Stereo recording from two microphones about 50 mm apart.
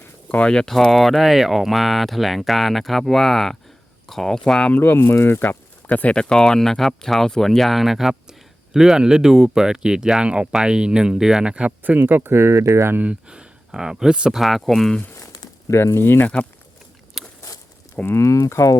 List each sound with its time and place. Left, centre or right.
0.3 s speech: left
0.7 s speech: centre
4.7 s speech: left
5.9 s speech: left
6.1 s speech: centre
11.8 s speech: right
13.2 s speech: centre
14.3 s speech: centre
15.7 s speech: left
17.2 s a sound: centre
18.2 s speech: left